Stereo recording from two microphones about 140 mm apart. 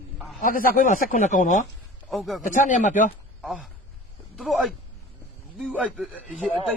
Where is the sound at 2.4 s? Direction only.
65° left (ahead or behind).